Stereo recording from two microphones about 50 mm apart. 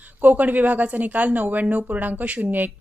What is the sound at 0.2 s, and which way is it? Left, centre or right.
Speech, right.